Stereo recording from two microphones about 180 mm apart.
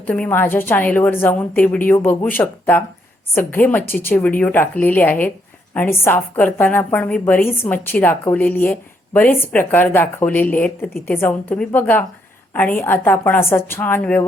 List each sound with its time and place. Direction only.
0.0 s a woman's voice: 10° left (ahead or behind)